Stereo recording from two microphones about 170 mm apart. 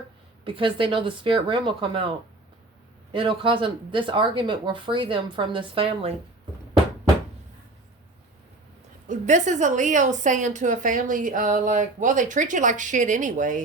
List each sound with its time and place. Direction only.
0.4 s speech: 30° right (ahead or behind)
9.0 s a woman's voice: 45° right (ahead or behind)